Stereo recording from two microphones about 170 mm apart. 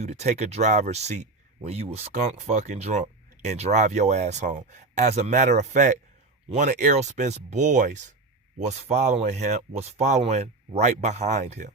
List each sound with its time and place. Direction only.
0.0 s speech: 40° right (ahead or behind)